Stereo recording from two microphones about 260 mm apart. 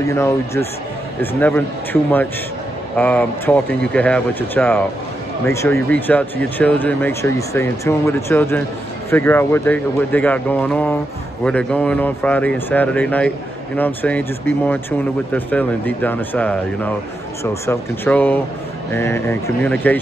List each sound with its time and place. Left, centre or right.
0.0 s speech: centre